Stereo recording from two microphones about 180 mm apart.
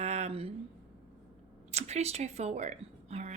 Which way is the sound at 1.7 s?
35° right (ahead or behind).